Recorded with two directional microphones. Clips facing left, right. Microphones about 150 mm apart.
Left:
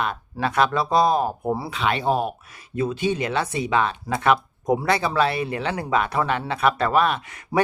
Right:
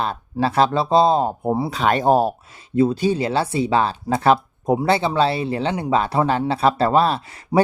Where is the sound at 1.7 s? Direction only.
40° right (ahead or behind).